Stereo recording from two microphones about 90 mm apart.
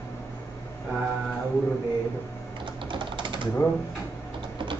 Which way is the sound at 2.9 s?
65° right (ahead or behind).